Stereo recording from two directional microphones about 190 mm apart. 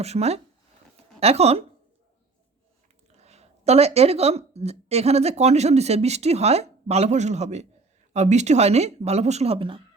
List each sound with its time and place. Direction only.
0.0 s speech: 35° right (ahead or behind)
3.1 s speech: 35° right (ahead or behind)